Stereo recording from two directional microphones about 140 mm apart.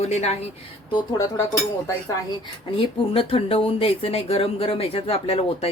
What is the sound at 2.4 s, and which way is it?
Speech, 40° left (ahead or behind).